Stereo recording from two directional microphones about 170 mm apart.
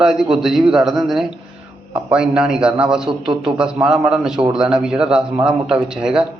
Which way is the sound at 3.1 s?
30° right (ahead or behind).